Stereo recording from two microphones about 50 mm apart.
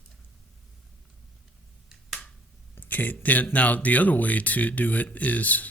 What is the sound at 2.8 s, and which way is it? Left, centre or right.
Speech, left.